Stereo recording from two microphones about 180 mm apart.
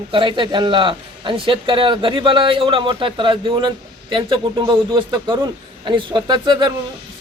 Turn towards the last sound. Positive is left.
turn(degrees=-25)  # may be behind; listen again after turning